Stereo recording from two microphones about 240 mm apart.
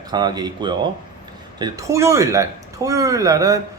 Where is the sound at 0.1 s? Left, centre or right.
Centre.